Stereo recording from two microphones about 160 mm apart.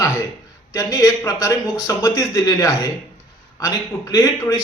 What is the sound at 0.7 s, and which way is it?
A man's voice, 20° left (ahead or behind).